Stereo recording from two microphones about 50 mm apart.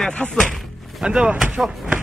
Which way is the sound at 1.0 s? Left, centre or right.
Centre.